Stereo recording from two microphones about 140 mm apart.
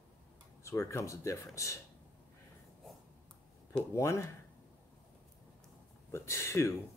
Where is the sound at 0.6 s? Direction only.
20° left (ahead or behind).